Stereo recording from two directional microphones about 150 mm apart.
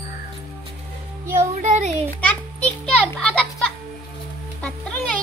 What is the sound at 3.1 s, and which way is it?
Children playing, 5° left (ahead or behind).